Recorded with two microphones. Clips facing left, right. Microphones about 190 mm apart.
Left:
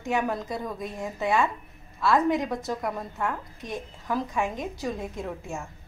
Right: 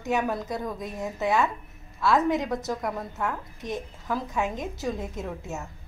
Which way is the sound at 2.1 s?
20° right (ahead or behind).